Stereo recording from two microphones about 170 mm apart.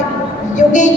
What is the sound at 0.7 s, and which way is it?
Music, 45° left (ahead or behind).